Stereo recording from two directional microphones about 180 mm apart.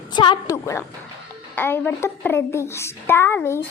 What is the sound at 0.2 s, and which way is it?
Speech, 25° left (ahead or behind).